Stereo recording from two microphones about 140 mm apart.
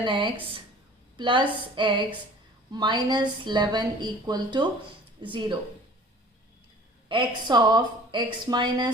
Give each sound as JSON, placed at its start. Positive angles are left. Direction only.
{"t": 0.0, "sound": "a woman's voice", "side_deg": -35}
{"t": 7.1, "sound": "a woman's voice", "side_deg": -35}